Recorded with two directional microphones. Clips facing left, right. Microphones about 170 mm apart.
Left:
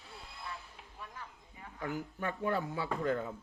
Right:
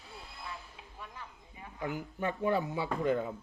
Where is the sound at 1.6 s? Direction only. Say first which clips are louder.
Right 1 dB; 15° right (ahead or behind).